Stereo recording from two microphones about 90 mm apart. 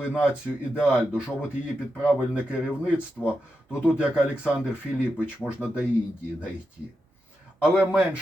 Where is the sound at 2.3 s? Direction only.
15° right (ahead or behind).